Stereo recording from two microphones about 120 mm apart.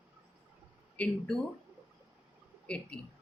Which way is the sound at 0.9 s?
10° left (ahead or behind).